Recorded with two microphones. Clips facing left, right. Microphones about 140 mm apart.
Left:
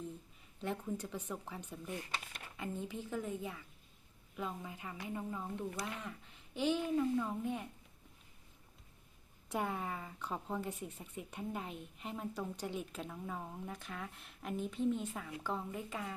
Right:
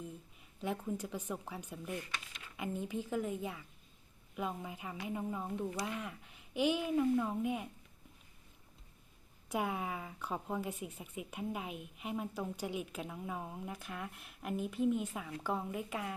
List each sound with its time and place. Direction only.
0.6 s speech: 10° right (ahead or behind)
9.5 s speech: 5° right (ahead or behind)